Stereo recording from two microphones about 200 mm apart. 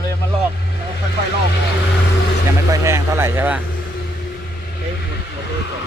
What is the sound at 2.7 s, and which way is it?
Speech, 15° right (ahead or behind).